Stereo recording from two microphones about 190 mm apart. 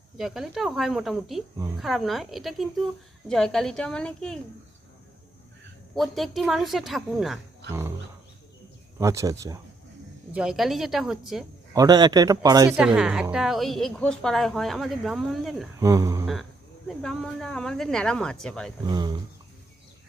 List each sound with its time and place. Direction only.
0.2 s speech: centre (ahead or behind)
5.9 s speech: centre (ahead or behind)
7.7 s speech: 15° right (ahead or behind)
9.0 s speech: 15° right (ahead or behind)
10.3 s speech: 5° right (ahead or behind)
11.7 s speech: 20° right (ahead or behind)
12.7 s speech: 5° right (ahead or behind)
15.8 s speech: 15° right (ahead or behind)
16.2 s speech: centre (ahead or behind)
18.9 s speech: 20° right (ahead or behind)